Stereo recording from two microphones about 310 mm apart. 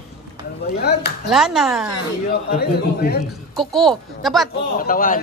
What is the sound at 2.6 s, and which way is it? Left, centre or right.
Speech, left.